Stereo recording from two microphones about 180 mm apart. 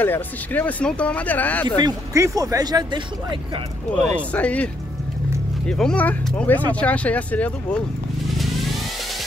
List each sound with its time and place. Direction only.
0.0 s speech: 10° left (ahead or behind)
1.8 s speech: 20° right (ahead or behind)
3.9 s speech: 5° left (ahead or behind)
5.7 s speech: 5° left (ahead or behind)